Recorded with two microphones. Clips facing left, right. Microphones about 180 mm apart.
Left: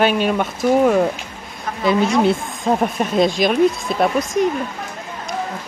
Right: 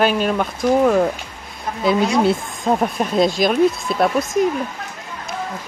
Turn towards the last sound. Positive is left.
turn(degrees=0)  # may be behind; listen again after turning